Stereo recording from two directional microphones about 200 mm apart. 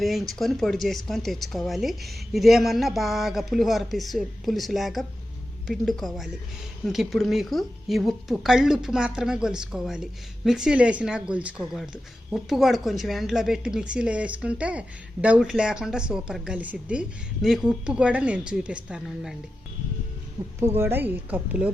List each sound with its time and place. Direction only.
0.0 s a woman's voice: centre (ahead or behind)
20.6 s a woman's voice: 10° right (ahead or behind)